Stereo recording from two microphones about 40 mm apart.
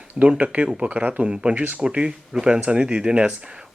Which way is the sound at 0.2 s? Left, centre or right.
Right.